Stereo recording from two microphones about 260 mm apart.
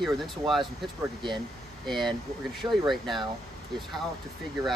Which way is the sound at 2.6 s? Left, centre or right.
Centre.